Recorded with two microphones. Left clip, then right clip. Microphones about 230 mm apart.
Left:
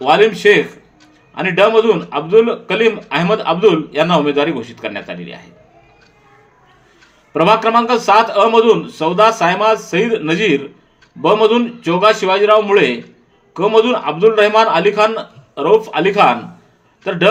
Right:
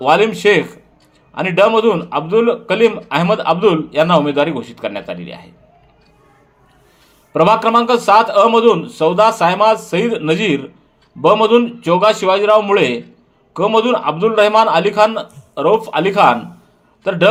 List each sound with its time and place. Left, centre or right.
0.0 s a man's voice: right
7.3 s a man's voice: right